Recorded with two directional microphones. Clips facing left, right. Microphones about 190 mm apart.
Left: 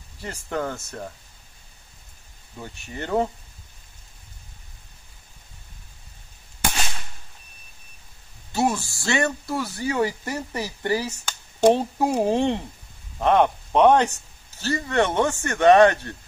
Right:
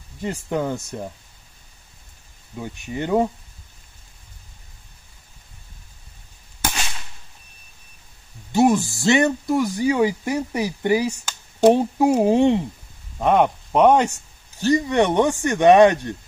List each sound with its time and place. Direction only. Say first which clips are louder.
0.2 s speech: right 4 dB; 15° right (ahead or behind)
2.5 s speech: right 7 dB; 15° right (ahead or behind)
8.5 s speech: right 7 dB; 15° right (ahead or behind)